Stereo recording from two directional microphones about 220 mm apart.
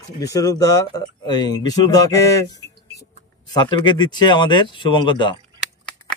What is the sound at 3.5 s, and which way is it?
Speech, 20° left (ahead or behind).